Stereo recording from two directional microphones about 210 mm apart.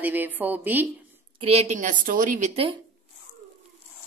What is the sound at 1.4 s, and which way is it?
A woman's voice, 30° right (ahead or behind).